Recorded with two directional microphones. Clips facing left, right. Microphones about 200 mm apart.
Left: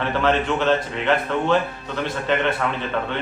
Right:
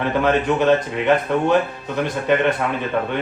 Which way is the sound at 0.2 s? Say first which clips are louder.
Right 3 dB; 15° right (ahead or behind).